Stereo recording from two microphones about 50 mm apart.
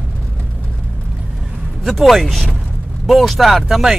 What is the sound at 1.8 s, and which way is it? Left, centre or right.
Speech, centre.